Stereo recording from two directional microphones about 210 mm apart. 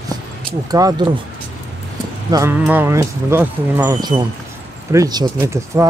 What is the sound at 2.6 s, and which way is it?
Speech, 10° right (ahead or behind).